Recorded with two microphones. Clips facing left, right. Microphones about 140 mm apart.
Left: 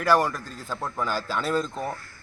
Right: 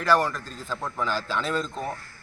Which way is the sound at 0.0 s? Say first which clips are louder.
Left 1 dB; 10° left (ahead or behind).